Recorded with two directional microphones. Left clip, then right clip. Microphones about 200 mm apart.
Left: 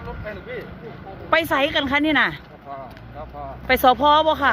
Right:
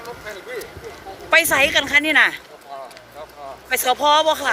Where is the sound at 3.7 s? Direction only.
15° left (ahead or behind).